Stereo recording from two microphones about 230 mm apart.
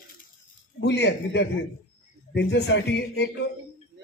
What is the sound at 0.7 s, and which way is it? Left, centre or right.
A man's voice, left.